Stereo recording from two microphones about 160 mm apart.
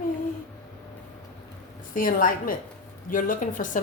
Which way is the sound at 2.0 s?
60° left (ahead or behind).